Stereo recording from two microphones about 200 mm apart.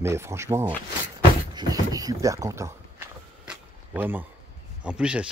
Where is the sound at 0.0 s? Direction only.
15° right (ahead or behind).